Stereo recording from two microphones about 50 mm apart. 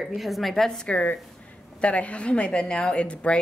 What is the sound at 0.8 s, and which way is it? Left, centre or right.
A woman's voice, left.